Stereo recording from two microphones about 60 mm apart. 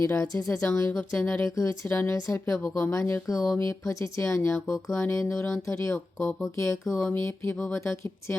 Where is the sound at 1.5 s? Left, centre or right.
Left.